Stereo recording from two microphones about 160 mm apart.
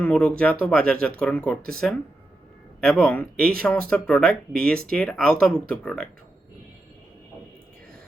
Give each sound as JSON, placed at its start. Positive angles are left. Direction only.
{"t": 0.0, "sound": "speech", "side_deg": 10}